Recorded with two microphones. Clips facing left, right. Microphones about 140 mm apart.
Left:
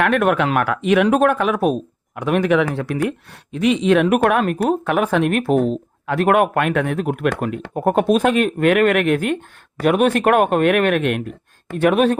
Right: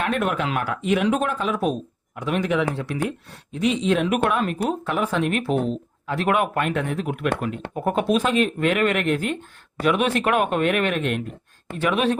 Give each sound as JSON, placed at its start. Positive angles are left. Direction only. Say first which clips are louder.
{"t": 0.0, "sound": "speech", "louder": "left 7 dB", "side_deg": 65}
{"t": 1.0, "sound": "speech", "louder": "left 7 dB", "side_deg": 55}
{"t": 11.8, "sound": "speech", "louder": "left 6 dB", "side_deg": 50}